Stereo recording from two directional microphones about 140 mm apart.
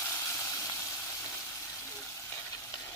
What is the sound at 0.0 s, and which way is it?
Vehicle, 20° left (ahead or behind).